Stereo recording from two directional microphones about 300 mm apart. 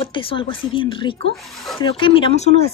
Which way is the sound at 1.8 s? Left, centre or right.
Centre.